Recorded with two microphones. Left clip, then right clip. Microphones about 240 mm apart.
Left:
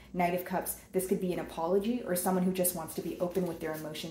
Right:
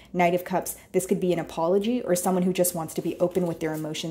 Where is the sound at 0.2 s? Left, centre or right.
Right.